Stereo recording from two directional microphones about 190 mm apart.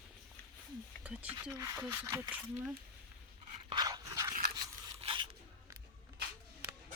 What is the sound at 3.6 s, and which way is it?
Dog, 20° right (ahead or behind).